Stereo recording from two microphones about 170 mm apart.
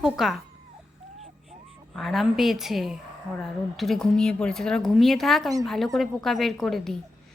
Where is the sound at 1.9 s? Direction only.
Centre (ahead or behind).